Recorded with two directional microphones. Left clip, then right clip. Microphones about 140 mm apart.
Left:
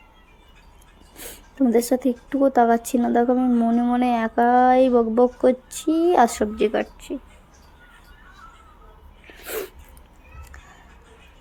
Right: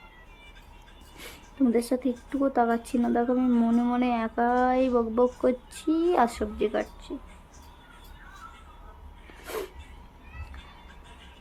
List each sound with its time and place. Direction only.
1.5 s speech: 25° left (ahead or behind)
9.2 s sneeze: 15° left (ahead or behind)